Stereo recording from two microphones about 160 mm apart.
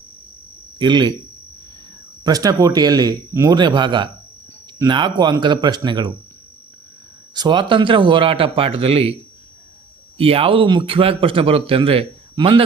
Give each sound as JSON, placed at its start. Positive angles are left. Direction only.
{"t": 0.8, "sound": "speech", "side_deg": -30}
{"t": 2.2, "sound": "speech", "side_deg": -25}
{"t": 7.3, "sound": "speech", "side_deg": -30}
{"t": 10.2, "sound": "speech", "side_deg": -35}